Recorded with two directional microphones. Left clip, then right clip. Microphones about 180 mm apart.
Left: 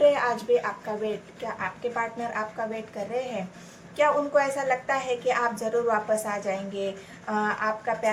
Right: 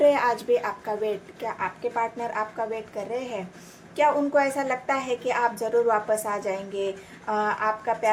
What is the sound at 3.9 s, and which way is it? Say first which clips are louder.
A woman's voice: right 1 dB; 35° right (ahead or behind).